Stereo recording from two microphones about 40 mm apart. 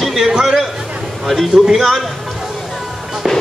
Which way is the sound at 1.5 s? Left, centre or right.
Centre.